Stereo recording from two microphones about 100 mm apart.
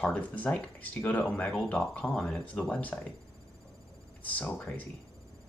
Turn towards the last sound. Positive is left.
turn(degrees=15)  # may be behind; listen again after turning